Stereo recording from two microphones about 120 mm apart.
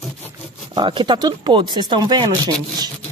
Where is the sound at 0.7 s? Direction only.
40° right (ahead or behind).